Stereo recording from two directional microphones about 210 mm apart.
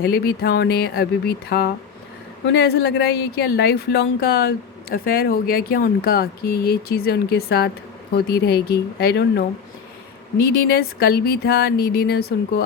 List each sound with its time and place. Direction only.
0.0 s speech: 50° left (ahead or behind)
10.5 s speech: 45° left (ahead or behind)